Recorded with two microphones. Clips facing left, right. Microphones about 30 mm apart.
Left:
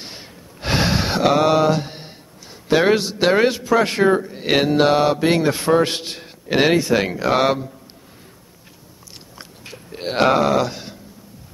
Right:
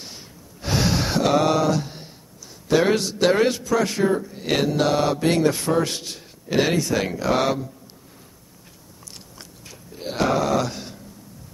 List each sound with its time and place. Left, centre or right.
0.0 s gasp: left
0.8 s a sound: left
2.7 s a man's voice: left
3.8 s a man's voice: left
9.7 s a sound: left
10.4 s speech: left